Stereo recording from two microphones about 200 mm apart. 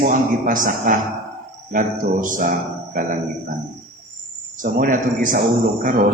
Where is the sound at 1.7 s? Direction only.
40° right (ahead or behind).